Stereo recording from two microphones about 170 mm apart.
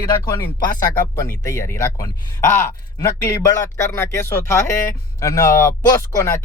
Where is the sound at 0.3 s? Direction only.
20° left (ahead or behind).